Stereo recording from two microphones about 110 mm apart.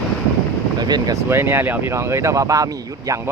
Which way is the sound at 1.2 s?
20° right (ahead or behind).